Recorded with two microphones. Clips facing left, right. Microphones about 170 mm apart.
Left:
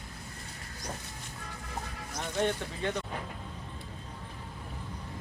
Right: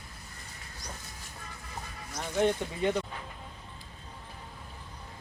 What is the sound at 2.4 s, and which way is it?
Speech, 15° right (ahead or behind).